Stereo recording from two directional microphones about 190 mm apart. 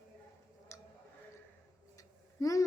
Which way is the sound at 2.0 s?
15° left (ahead or behind).